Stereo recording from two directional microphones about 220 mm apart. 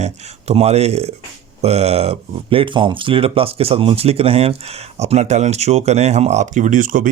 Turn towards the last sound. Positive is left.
turn(degrees=-35)  # may be behind; listen again after turning